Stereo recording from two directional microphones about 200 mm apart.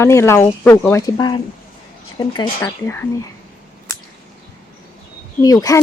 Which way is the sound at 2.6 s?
10° left (ahead or behind).